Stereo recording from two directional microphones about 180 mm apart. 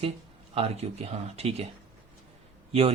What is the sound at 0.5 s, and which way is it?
Speech, 35° right (ahead or behind).